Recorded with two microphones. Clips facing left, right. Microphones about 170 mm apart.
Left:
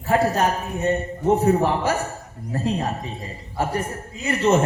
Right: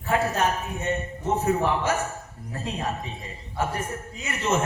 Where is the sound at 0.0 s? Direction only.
35° left (ahead or behind).